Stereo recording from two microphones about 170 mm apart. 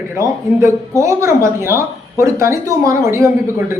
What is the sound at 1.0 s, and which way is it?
Speech, 15° right (ahead or behind).